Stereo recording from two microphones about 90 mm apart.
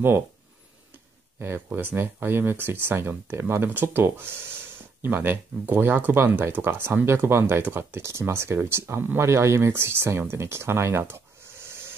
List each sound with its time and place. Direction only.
1.4 s speech: 25° right (ahead or behind)